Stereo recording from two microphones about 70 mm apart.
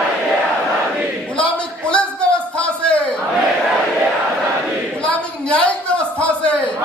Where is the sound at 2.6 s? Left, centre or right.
Centre.